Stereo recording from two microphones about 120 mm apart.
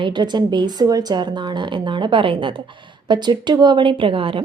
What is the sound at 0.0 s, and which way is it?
A woman's voice, 40° right (ahead or behind).